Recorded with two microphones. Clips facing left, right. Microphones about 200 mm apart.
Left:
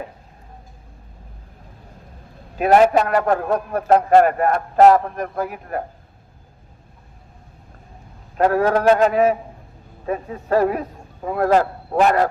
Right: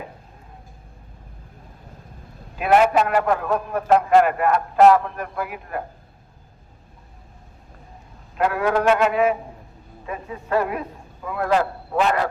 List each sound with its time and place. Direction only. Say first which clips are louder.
2.6 s a man's voice: left 3 dB; 40° left (ahead or behind)
8.4 s a man's voice: left 4 dB; 40° left (ahead or behind)